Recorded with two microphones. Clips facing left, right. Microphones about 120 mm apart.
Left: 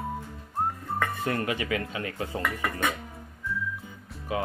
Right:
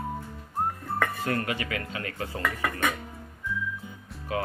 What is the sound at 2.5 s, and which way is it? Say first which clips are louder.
Speech: right 4 dB; centre (ahead or behind).